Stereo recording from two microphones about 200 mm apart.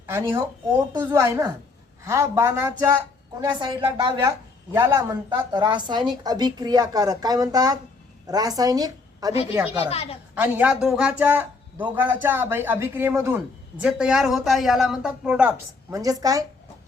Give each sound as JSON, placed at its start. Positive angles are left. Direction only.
{"t": 0.0, "sound": "a man's voice", "side_deg": -15}
{"t": 9.7, "sound": "a woman's voice", "side_deg": 30}
{"t": 10.3, "sound": "a man's voice", "side_deg": -10}